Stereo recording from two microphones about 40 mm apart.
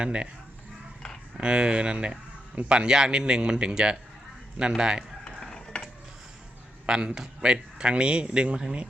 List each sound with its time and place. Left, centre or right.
0.0 s speech: right
1.4 s speech: right
5.4 s a sound: centre
6.8 s speech: right